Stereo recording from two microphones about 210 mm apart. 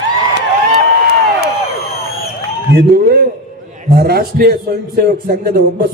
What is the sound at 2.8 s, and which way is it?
A man's voice, 50° right (ahead or behind).